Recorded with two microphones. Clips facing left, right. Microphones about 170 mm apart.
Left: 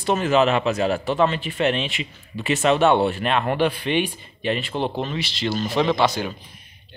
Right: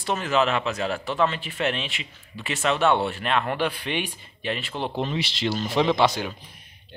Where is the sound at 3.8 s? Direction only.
5° right (ahead or behind).